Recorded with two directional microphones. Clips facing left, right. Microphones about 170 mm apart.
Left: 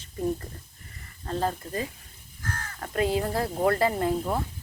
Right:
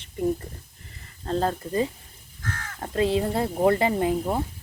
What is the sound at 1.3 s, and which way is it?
Speech, 35° right (ahead or behind).